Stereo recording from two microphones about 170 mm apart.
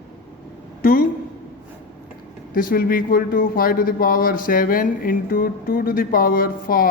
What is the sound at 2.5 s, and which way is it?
Speech, 55° left (ahead or behind).